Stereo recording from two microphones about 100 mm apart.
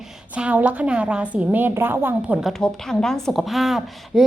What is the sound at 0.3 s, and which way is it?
A woman's voice, 10° right (ahead or behind).